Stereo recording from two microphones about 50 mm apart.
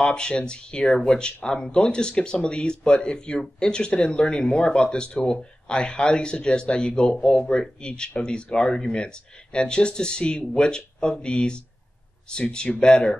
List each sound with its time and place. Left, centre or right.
0.0 s speech: centre